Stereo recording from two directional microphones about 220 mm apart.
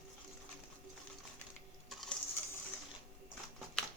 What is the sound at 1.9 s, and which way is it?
Sewing machine, centre (ahead or behind).